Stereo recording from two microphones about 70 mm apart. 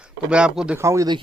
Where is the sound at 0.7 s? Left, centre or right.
Right.